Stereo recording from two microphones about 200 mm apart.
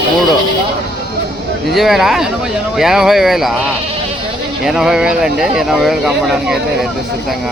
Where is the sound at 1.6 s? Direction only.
Centre (ahead or behind).